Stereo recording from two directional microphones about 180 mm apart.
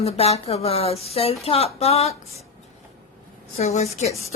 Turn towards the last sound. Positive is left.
turn(degrees=35)  # may be behind; listen again after turning